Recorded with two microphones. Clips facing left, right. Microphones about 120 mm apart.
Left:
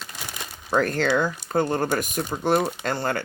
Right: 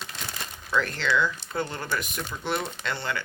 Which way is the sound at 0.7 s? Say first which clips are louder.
Left 5 dB; 45° left (ahead or behind).